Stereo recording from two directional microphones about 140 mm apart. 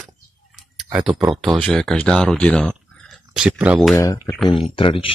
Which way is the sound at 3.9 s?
20° left (ahead or behind).